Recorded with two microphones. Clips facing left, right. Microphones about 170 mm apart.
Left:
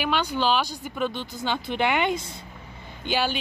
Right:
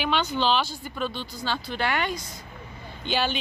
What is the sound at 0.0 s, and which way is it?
Speech, 10° left (ahead or behind).